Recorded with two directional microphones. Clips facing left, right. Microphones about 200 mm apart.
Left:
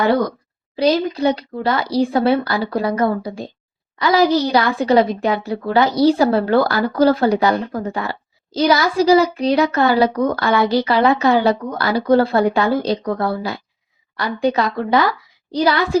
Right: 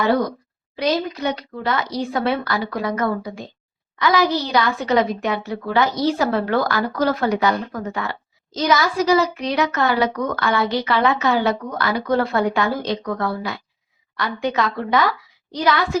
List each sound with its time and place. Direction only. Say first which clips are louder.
0.8 s a woman's voice: left 5 dB; 30° left (ahead or behind)